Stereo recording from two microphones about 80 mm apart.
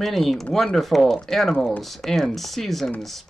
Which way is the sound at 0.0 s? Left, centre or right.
Centre.